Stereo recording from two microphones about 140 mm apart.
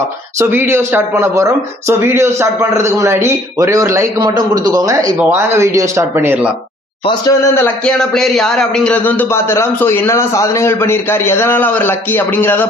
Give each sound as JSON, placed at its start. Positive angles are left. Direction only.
{"t": 0.3, "sound": "speech", "side_deg": -15}
{"t": 7.3, "sound": "a man's voice", "side_deg": 20}
{"t": 7.9, "sound": "a man's voice", "side_deg": 5}